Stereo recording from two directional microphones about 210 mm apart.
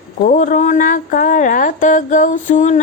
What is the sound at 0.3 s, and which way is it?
Speech, 40° left (ahead or behind).